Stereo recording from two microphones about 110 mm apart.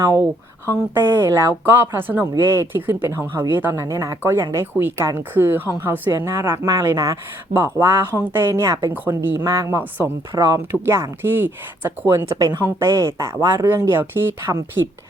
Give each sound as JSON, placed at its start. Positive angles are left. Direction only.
{"t": 0.0, "sound": "speech", "side_deg": -30}